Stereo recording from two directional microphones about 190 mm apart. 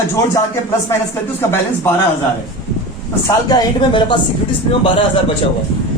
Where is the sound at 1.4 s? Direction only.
10° left (ahead or behind).